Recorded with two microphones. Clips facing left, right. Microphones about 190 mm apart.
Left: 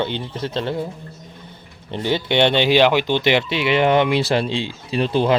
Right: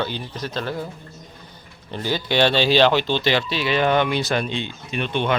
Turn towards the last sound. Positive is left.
turn(degrees=35)  # may be behind; listen again after turning